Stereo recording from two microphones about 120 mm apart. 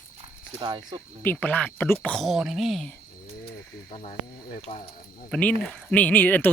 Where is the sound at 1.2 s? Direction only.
15° left (ahead or behind).